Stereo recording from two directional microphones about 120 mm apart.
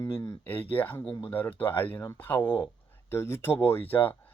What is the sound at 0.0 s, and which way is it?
Speech, 25° left (ahead or behind).